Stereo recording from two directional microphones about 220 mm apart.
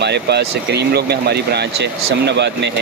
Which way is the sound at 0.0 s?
50° right (ahead or behind).